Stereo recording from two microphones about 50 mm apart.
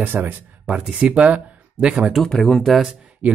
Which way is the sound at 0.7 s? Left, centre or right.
Right.